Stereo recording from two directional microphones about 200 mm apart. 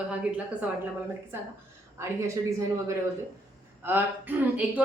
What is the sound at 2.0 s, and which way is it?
A woman's voice, 15° right (ahead or behind).